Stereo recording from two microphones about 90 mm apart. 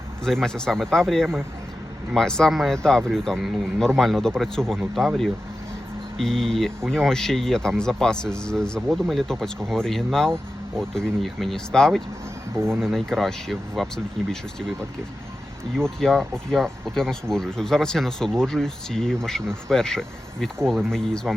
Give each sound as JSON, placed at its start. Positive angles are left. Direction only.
{"t": 0.3, "sound": "speech", "side_deg": 5}
{"t": 12.5, "sound": "speech", "side_deg": -25}
{"t": 12.8, "sound": "speech", "side_deg": 0}
{"t": 15.8, "sound": "speech", "side_deg": 5}